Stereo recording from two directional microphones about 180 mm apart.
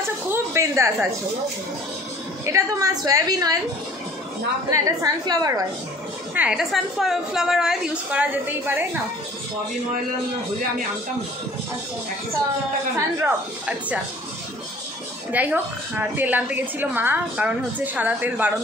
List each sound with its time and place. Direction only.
0.3 s a woman's voice: 15° right (ahead or behind)
2.4 s a woman's voice: 20° right (ahead or behind)
4.6 s a woman's voice: 20° right (ahead or behind)
6.3 s a woman's voice: 5° right (ahead or behind)
12.9 s a woman's voice: 10° right (ahead or behind)
15.3 s a woman's voice: 10° right (ahead or behind)